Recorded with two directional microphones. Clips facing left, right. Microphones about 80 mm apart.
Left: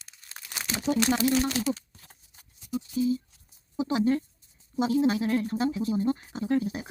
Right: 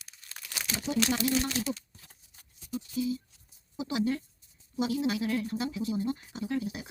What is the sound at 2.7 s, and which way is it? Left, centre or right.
Speech, left.